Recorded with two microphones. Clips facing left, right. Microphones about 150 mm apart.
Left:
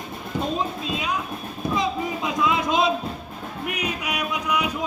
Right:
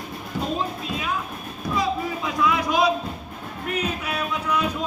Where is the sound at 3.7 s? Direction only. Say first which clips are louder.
Right 2 dB; 15° left (ahead or behind).